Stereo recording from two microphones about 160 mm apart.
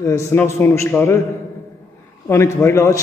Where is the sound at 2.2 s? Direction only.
15° left (ahead or behind).